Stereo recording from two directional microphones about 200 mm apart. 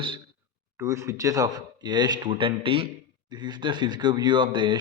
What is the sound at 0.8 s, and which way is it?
Speech, 15° right (ahead or behind).